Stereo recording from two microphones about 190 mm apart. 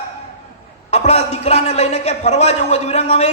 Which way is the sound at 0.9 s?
35° left (ahead or behind).